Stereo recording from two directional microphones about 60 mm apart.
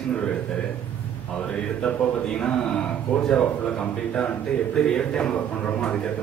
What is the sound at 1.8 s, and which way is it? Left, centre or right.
Speech, centre.